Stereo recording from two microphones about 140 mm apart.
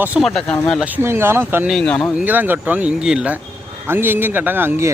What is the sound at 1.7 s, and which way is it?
Speech, 5° left (ahead or behind).